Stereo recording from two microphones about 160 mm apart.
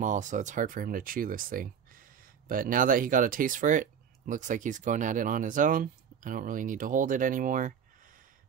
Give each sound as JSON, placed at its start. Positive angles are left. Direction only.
{"t": 0.0, "sound": "speech", "side_deg": -50}